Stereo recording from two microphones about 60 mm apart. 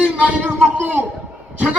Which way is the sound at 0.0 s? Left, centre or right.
Right.